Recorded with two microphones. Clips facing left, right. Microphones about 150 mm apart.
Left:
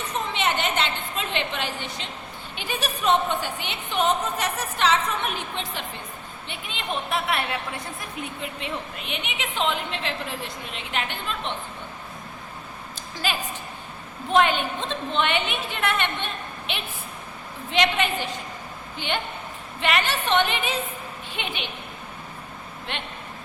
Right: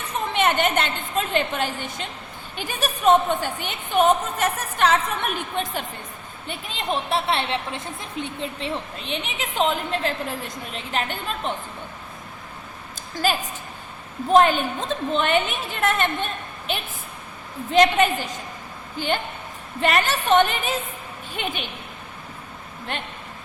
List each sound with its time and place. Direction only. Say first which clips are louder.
0.3 s a sound: right 5 dB; 50° right (ahead or behind)
2.6 s a woman's voice: right 2 dB; 45° right (ahead or behind)
6.5 s a woman's voice: right 4 dB; 35° right (ahead or behind)
13.2 s a woman's voice: right 5 dB; 45° right (ahead or behind)
22.9 s a woman's voice: right 3 dB; 40° right (ahead or behind)